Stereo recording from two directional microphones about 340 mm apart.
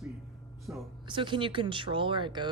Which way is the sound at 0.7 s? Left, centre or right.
Centre.